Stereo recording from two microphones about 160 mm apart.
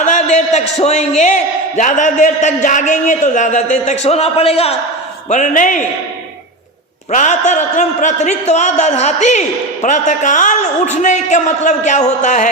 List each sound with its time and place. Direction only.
0.0 s a man's voice: 50° left (ahead or behind)
5.3 s a man's voice: 50° left (ahead or behind)
7.1 s a man's voice: 50° left (ahead or behind)